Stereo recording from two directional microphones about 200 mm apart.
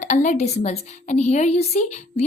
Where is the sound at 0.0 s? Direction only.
35° left (ahead or behind).